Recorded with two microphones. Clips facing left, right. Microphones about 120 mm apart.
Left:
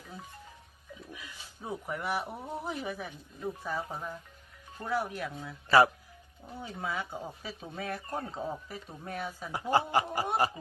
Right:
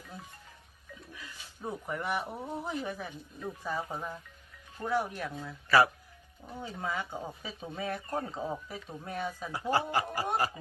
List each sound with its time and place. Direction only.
1.1 s a sound: 15° left (ahead or behind)
1.9 s speech: centre (ahead or behind)
5.6 s speech: 25° left (ahead or behind)
6.6 s speech: 5° left (ahead or behind)
9.5 s speech: 20° left (ahead or behind)